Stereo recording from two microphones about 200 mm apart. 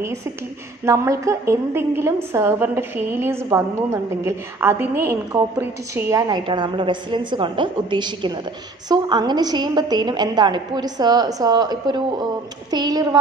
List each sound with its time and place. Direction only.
0.8 s a woman's voice: 15° right (ahead or behind)